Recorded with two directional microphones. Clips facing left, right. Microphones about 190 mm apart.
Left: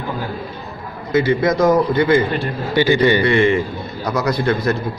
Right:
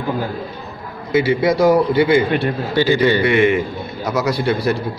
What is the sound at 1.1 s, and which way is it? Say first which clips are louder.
A man's voice: even; 10° right (ahead or behind).